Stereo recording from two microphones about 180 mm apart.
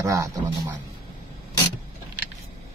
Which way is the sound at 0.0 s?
20° right (ahead or behind).